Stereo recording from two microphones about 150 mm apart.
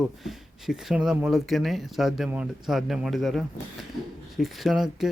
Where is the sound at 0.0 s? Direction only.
Centre (ahead or behind).